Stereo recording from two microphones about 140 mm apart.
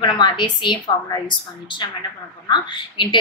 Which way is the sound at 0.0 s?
35° left (ahead or behind).